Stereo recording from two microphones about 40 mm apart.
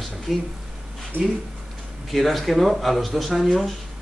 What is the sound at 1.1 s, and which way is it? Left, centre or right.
Speech, right.